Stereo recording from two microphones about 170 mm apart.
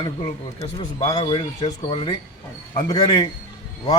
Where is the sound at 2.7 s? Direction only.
20° left (ahead or behind).